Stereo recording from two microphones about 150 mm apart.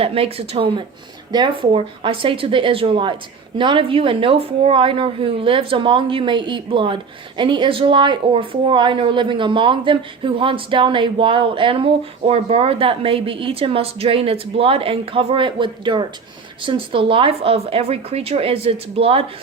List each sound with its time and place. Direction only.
0.0 s a woman's voice: 40° right (ahead or behind)